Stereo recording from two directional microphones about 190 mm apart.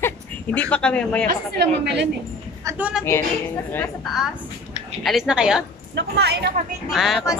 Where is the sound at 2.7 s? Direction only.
5° right (ahead or behind).